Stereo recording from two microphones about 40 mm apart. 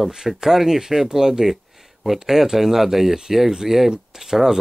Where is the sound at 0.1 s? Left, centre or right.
Centre.